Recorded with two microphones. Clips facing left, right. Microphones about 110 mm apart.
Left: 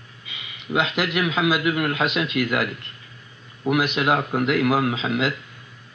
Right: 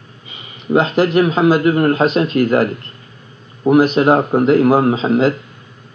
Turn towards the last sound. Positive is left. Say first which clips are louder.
# right 10 dB
turn(degrees=-40)  # may be behind; listen again after turning